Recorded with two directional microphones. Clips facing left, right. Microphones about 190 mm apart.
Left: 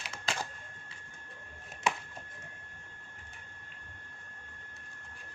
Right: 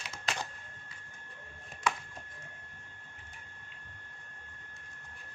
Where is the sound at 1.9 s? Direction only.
25° left (ahead or behind).